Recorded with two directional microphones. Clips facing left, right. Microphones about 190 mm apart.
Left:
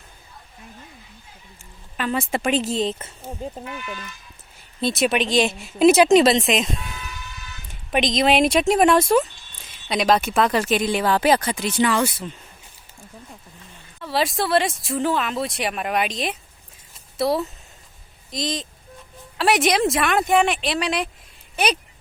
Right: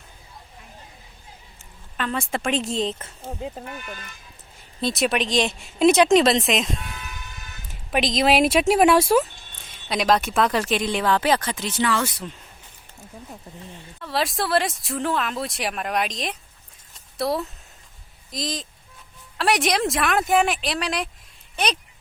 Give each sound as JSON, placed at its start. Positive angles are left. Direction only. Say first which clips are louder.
{"t": 2.0, "sound": "speech", "louder": "left 3 dB", "side_deg": 5}
{"t": 3.6, "sound": "speech", "louder": "left 3 dB", "side_deg": -45}
{"t": 4.8, "sound": "speech", "louder": "left 2 dB", "side_deg": 0}
{"t": 6.8, "sound": "vehicle", "louder": "left 2 dB", "side_deg": -55}
{"t": 7.7, "sound": "speech", "louder": "left 2 dB", "side_deg": 0}
{"t": 14.0, "sound": "speech", "louder": "left 2 dB", "side_deg": 0}